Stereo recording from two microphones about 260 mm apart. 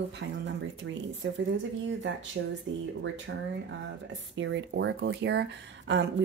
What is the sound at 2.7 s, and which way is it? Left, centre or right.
A woman's voice, right.